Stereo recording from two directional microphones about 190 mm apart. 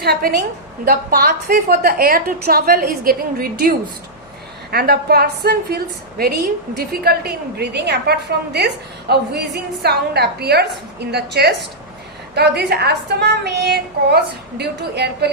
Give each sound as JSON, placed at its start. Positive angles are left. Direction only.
{"t": 0.0, "sound": "a woman's voice", "side_deg": -50}